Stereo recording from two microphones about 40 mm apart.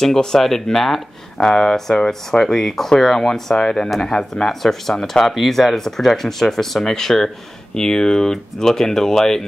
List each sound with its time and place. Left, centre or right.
0.0 s speech: centre
1.5 s speech: centre